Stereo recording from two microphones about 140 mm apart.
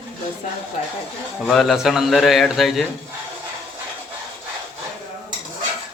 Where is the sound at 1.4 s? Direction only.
Centre (ahead or behind).